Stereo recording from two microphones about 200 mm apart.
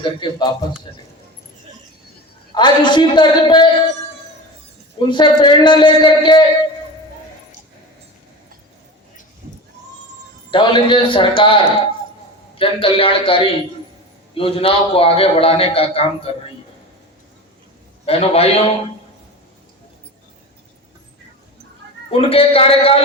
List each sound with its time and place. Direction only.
0.0 s a man's voice: 25° left (ahead or behind)
2.6 s a man's voice: 20° left (ahead or behind)
4.9 s a man's voice: 25° left (ahead or behind)
10.5 s a man's voice: 25° left (ahead or behind)
18.0 s a man's voice: 30° left (ahead or behind)
22.1 s a man's voice: 30° left (ahead or behind)